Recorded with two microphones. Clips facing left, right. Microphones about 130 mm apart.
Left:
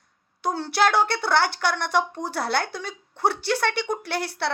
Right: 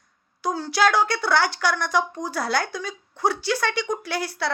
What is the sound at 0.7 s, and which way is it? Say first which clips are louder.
A woman's voice: right 1 dB; 60° left (ahead or behind).